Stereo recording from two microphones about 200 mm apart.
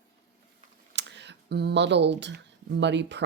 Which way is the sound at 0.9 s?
60° right (ahead or behind).